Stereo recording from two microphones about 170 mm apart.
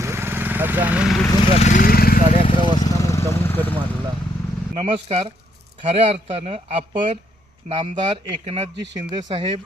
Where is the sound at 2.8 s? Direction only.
20° left (ahead or behind).